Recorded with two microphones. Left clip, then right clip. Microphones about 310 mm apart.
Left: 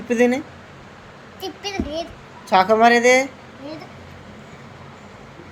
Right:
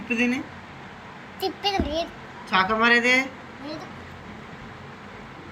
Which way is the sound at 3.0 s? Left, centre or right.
Left.